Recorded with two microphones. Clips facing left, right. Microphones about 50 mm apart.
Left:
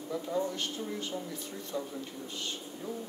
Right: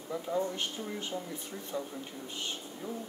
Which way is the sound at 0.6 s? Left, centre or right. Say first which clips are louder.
Left 1 dB; right.